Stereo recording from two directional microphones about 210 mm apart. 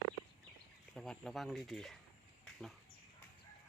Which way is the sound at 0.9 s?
Centre (ahead or behind).